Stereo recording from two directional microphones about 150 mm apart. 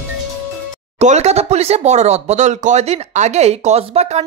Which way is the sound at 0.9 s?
45° right (ahead or behind).